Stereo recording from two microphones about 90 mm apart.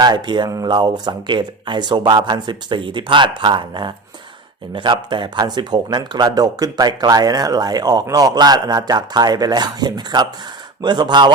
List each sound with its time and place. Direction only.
0.0 s speech: 55° right (ahead or behind)